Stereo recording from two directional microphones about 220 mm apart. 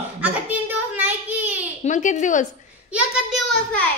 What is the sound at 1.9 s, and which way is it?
Speech, 35° left (ahead or behind).